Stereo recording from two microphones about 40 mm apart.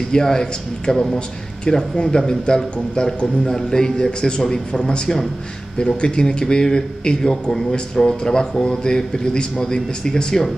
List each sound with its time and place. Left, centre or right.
0.1 s a man's voice: centre